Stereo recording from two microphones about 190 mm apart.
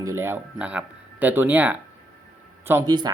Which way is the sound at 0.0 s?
15° right (ahead or behind).